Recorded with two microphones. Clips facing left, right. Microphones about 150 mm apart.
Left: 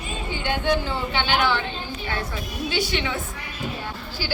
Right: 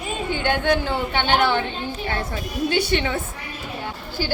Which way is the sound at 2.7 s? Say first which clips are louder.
Right 3 dB; 45° right (ahead or behind).